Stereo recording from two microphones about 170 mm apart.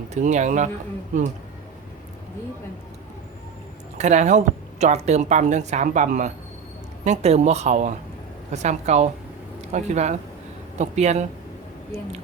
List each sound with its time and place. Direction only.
0.1 s speech: 45° right (ahead or behind)
3.9 s speech: 45° right (ahead or behind)